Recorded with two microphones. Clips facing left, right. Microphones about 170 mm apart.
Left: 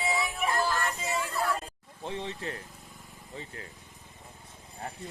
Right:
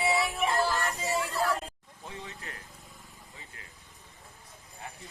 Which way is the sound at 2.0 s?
25° left (ahead or behind).